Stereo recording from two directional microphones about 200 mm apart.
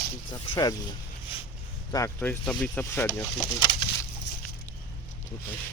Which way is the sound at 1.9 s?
10° left (ahead or behind).